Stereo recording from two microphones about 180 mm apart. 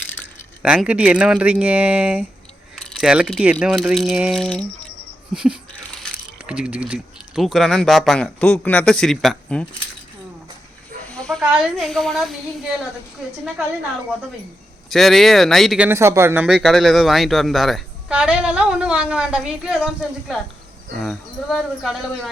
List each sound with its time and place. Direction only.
0.6 s a woman's voice: 5° right (ahead or behind)
11.1 s speech: 5° left (ahead or behind)
14.8 s a woman's voice: centre (ahead or behind)
15.9 s speech: 15° right (ahead or behind)
16.6 s a woman's voice: centre (ahead or behind)